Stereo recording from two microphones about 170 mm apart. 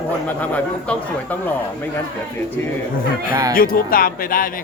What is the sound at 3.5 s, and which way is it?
Speech, 60° left (ahead or behind).